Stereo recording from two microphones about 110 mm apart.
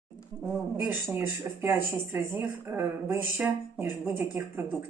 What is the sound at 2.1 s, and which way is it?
Speech, 20° right (ahead or behind).